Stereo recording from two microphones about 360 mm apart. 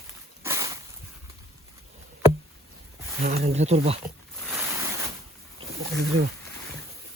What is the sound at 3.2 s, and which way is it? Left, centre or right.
Speech, right.